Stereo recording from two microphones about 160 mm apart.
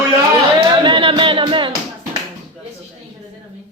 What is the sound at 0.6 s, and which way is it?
Music, 30° right (ahead or behind).